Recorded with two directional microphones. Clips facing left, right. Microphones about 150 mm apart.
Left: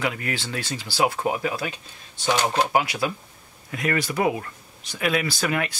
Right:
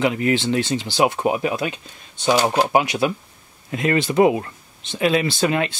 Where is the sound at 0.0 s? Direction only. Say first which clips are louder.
Right 9 dB; 25° right (ahead or behind).